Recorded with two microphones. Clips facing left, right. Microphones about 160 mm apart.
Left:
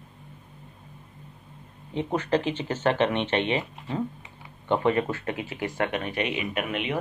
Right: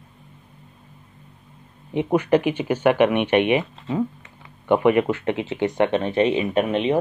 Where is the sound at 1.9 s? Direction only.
15° right (ahead or behind).